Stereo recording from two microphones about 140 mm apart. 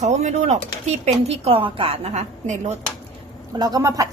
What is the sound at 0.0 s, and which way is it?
A woman's voice, 55° right (ahead or behind).